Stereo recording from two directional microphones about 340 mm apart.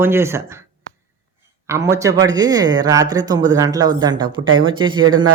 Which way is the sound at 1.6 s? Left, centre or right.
Centre.